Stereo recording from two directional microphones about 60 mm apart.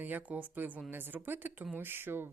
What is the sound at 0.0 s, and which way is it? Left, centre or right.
Speech, right.